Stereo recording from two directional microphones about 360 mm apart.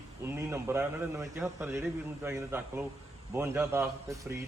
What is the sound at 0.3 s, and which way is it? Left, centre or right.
A man's voice, centre.